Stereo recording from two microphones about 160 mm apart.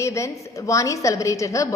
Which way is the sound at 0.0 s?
20° left (ahead or behind).